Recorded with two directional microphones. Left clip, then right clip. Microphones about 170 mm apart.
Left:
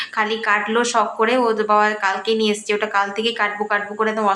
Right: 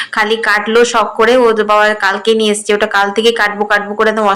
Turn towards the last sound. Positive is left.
turn(degrees=-30)  # may be behind; listen again after turning